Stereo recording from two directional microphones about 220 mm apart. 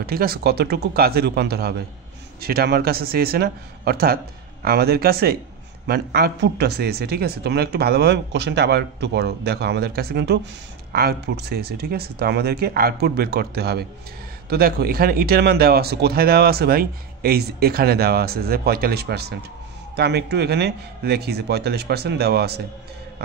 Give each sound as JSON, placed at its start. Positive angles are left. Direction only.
{"t": 0.0, "sound": "speech", "side_deg": -45}